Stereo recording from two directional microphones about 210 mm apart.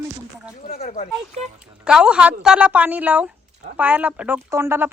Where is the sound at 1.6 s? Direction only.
5° right (ahead or behind).